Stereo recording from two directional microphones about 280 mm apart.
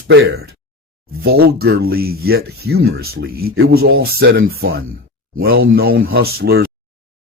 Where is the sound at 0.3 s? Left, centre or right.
Right.